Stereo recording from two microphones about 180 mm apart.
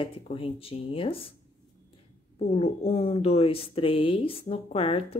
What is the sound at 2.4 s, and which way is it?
A woman's voice, 35° left (ahead or behind).